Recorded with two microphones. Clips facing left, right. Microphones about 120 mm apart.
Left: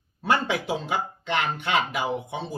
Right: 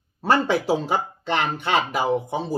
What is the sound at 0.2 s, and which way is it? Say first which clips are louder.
A man's voice: right 4 dB; 35° right (ahead or behind).